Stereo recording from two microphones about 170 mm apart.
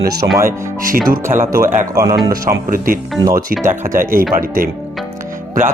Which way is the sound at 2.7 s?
55° right (ahead or behind).